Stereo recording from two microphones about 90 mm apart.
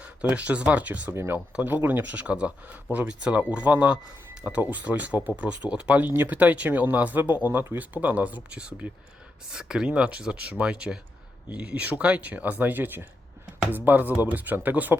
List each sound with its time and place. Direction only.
0.2 s speech: 15° right (ahead or behind)